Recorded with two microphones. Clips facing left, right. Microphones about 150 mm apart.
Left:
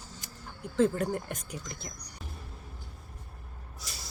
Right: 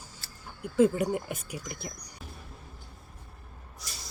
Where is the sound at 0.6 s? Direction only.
10° right (ahead or behind).